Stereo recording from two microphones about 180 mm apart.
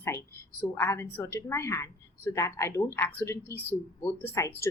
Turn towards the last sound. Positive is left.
turn(degrees=15)  # may be behind; listen again after turning